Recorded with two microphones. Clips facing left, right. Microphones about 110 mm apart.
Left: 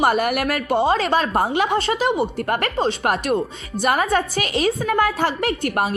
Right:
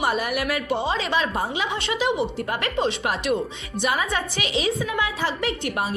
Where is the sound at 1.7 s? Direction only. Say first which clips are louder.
Left 5 dB; 35° left (ahead or behind).